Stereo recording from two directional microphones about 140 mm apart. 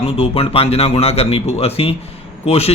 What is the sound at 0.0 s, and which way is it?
A man's voice, 45° left (ahead or behind).